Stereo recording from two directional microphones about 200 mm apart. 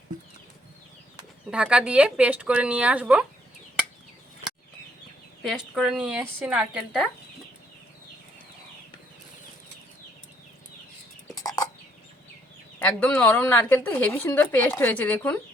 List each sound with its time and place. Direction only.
1.5 s speech: 5° right (ahead or behind)
5.4 s speech: centre (ahead or behind)
11.4 s chicken: 20° left (ahead or behind)
12.8 s a woman's voice: 5° left (ahead or behind)